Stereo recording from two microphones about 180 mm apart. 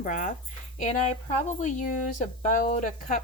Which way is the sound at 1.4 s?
45° left (ahead or behind).